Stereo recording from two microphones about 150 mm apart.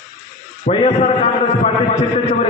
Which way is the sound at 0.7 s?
40° left (ahead or behind).